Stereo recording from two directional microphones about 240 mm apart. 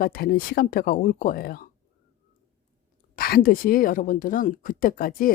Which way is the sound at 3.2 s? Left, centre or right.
Left.